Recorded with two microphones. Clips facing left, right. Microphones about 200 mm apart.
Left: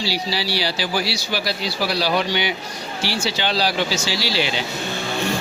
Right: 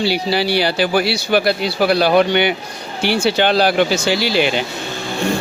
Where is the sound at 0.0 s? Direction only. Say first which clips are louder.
Right 7 dB; 55° right (ahead or behind).